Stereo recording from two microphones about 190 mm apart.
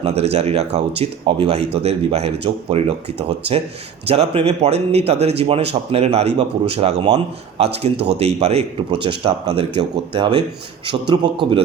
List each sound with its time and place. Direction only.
0.0 s a man's voice: 35° right (ahead or behind)